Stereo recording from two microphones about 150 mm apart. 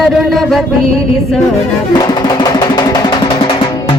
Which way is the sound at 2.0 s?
30° left (ahead or behind).